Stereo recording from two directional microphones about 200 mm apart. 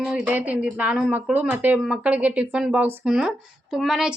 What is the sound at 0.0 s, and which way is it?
Speech, 5° right (ahead or behind).